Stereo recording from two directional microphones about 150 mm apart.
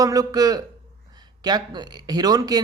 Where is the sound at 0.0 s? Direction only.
25° right (ahead or behind).